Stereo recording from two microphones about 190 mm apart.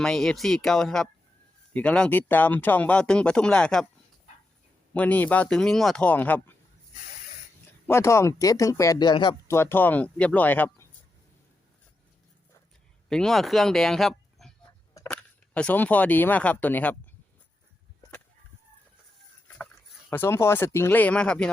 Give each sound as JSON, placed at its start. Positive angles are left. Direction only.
{"t": 0.0, "sound": "speech", "side_deg": 0}
{"t": 4.9, "sound": "speech", "side_deg": 10}
{"t": 7.9, "sound": "speech", "side_deg": 15}
{"t": 9.6, "sound": "speech", "side_deg": 10}
{"t": 13.1, "sound": "speech", "side_deg": 0}
{"t": 20.1, "sound": "speech", "side_deg": 10}